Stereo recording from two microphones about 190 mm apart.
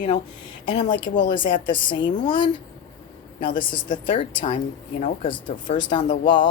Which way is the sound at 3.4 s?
25° left (ahead or behind).